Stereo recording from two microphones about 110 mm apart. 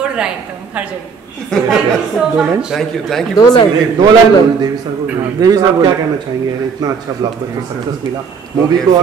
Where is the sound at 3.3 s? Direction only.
40° left (ahead or behind).